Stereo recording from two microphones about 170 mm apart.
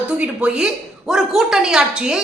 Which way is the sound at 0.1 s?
5° right (ahead or behind).